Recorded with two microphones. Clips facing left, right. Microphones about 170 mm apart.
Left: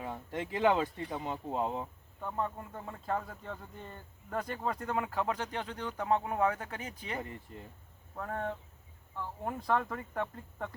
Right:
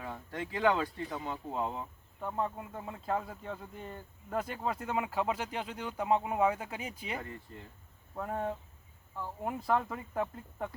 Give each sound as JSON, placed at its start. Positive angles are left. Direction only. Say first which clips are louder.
{"t": 0.0, "sound": "speech", "louder": "left 2 dB", "side_deg": 20}
{"t": 2.2, "sound": "speech", "louder": "right 1 dB", "side_deg": -5}